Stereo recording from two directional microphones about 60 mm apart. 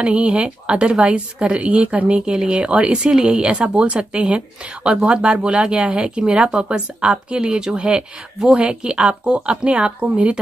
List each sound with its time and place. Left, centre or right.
0.0 s speech: centre